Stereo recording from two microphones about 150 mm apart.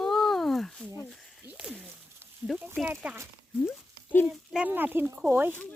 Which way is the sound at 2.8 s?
10° right (ahead or behind).